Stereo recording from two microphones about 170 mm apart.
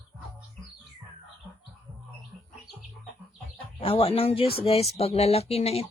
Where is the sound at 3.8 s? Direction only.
35° left (ahead or behind).